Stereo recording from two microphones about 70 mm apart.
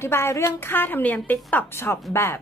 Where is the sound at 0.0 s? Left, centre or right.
Left.